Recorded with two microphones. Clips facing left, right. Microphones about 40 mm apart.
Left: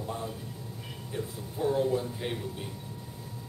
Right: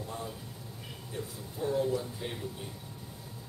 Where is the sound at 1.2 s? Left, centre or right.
Centre.